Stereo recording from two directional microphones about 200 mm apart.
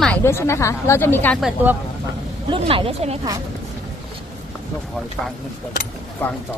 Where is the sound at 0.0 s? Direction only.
10° left (ahead or behind).